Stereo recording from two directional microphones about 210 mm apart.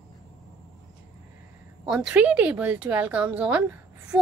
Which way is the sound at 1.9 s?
5° right (ahead or behind).